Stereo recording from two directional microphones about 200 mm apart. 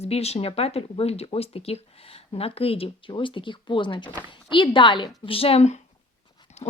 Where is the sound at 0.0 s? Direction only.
30° left (ahead or behind).